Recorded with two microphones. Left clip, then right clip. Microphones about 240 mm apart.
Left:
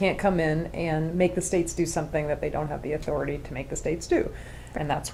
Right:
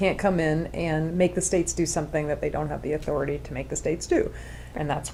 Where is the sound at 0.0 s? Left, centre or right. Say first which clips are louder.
Right 1 dB; right.